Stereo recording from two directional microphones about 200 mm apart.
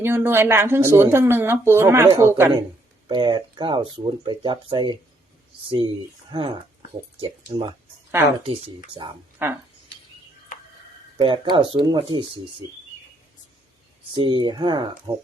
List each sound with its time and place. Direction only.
0.0 s speech: 10° right (ahead or behind)
9.4 s speech: 10° right (ahead or behind)
11.2 s speech: 25° right (ahead or behind)
14.1 s speech: 25° right (ahead or behind)